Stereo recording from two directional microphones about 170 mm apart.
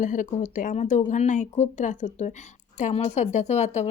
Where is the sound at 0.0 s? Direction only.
50° left (ahead or behind).